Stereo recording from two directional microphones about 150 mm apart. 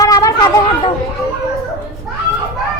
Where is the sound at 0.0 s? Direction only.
25° left (ahead or behind).